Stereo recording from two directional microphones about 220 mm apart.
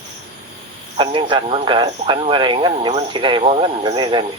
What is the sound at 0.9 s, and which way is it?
Speech, 20° right (ahead or behind).